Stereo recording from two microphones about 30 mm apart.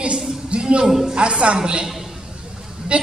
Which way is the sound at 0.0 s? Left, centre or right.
Right.